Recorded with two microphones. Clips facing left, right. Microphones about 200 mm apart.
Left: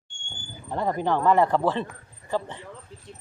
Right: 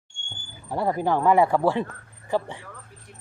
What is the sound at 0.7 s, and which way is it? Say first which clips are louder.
Speech: right 1 dB; 10° right (ahead or behind).